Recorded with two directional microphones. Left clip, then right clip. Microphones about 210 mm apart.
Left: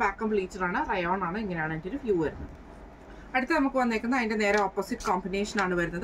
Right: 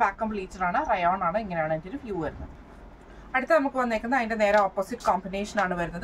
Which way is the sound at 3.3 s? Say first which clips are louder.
Right 3 dB; 20° right (ahead or behind).